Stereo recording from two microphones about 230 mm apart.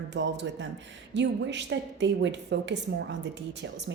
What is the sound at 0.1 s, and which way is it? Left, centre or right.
A woman's voice, right.